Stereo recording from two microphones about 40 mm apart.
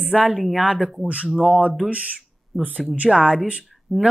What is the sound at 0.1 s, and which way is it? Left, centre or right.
Speech, right.